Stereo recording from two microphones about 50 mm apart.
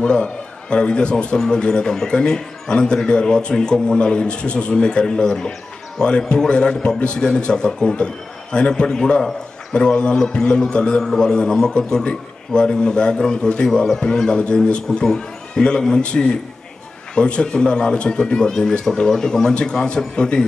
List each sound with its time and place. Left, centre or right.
0.0 s a man's voice: centre